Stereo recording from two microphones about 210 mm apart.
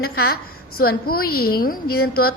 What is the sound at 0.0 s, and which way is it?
A woman's voice, 45° left (ahead or behind).